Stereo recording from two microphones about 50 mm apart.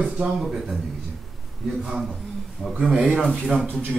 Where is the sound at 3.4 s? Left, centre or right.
Centre.